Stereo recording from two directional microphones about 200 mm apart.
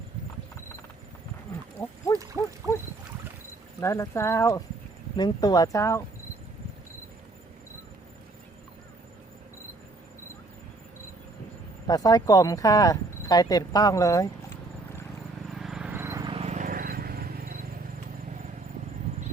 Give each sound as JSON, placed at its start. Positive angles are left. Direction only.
{"t": 2.4, "sound": "dog", "side_deg": -15}
{"t": 3.8, "sound": "speech", "side_deg": 15}
{"t": 11.9, "sound": "speech", "side_deg": 20}
{"t": 15.5, "sound": "vehicle", "side_deg": 0}
{"t": 16.3, "sound": "horse", "side_deg": -35}